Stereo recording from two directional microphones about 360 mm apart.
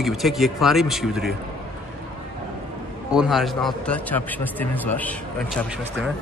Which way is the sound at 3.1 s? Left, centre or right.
Centre.